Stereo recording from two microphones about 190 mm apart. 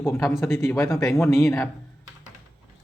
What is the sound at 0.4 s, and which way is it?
Speech, 15° left (ahead or behind).